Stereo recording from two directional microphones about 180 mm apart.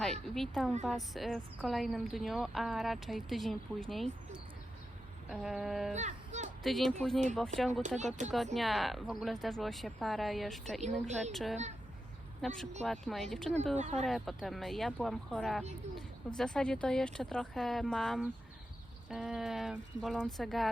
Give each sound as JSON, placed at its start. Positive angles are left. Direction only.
{"t": 0.0, "sound": "a sound", "side_deg": 0}
{"t": 1.1, "sound": "speech", "side_deg": 0}
{"t": 5.9, "sound": "speech", "side_deg": -40}
{"t": 6.6, "sound": "speech", "side_deg": 0}
{"t": 7.7, "sound": "speech", "side_deg": -40}
{"t": 8.5, "sound": "speech", "side_deg": 0}
{"t": 13.7, "sound": "speech", "side_deg": -40}
{"t": 14.0, "sound": "speech", "side_deg": 0}